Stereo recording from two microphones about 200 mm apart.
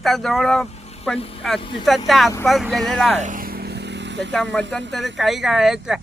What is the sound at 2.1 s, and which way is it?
Speech, centre (ahead or behind).